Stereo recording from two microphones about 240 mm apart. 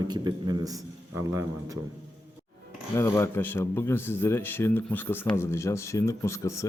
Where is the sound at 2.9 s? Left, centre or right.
Centre.